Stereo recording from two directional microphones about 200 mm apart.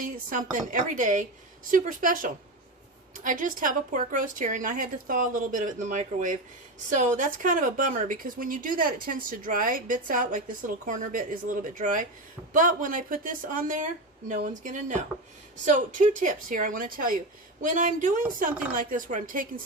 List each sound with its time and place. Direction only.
0.0 s a woman's voice: 40° right (ahead or behind)